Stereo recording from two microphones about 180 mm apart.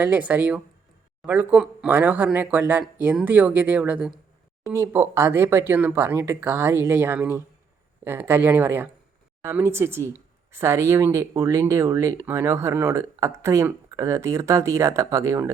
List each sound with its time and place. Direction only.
0.0 s speech: 10° right (ahead or behind)